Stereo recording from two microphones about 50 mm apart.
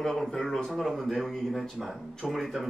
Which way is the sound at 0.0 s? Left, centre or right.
Centre.